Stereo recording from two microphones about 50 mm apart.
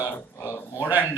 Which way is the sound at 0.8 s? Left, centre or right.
Right.